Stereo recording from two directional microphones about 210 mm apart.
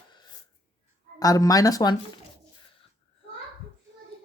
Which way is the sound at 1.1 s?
15° left (ahead or behind).